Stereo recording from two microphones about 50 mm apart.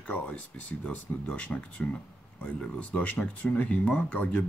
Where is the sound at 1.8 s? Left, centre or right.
Left.